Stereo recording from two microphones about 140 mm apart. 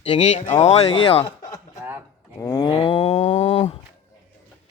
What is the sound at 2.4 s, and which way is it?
Cattle, 25° left (ahead or behind).